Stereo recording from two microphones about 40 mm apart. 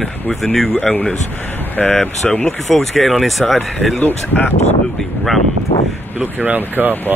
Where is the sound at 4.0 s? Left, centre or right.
Left.